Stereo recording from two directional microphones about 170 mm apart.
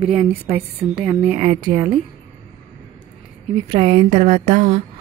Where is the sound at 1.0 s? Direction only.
5° right (ahead or behind).